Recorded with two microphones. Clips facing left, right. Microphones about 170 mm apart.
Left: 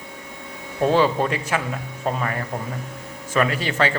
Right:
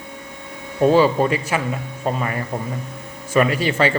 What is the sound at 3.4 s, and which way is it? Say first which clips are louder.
Speech: right 4 dB; 10° right (ahead or behind).